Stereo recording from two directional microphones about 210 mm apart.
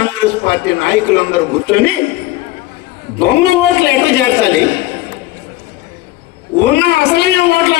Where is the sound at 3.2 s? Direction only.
50° left (ahead or behind).